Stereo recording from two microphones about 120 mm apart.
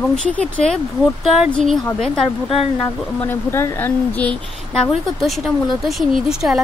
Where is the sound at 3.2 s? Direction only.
20° left (ahead or behind).